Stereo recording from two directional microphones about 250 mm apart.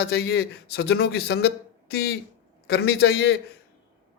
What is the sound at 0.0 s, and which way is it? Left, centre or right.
Speech, left.